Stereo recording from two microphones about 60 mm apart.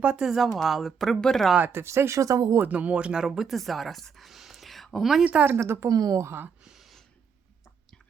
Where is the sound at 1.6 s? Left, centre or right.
Right.